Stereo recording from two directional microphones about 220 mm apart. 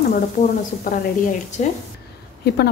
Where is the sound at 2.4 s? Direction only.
50° left (ahead or behind).